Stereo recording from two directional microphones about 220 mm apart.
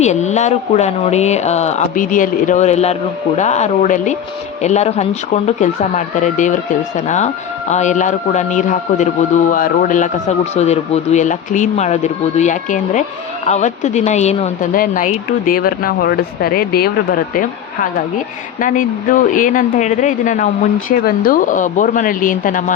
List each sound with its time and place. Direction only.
0.0 s a man's voice: 30° left (ahead or behind)
18.6 s a man's voice: 35° left (ahead or behind)